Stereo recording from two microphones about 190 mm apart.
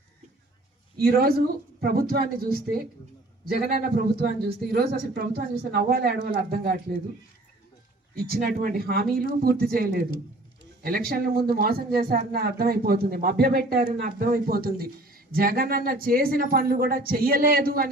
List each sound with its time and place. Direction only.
1.0 s speech: 50° right (ahead or behind)
8.3 s speech: 50° right (ahead or behind)